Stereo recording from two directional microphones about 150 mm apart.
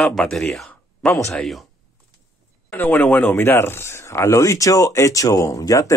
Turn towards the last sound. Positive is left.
turn(degrees=20)  # may be behind; listen again after turning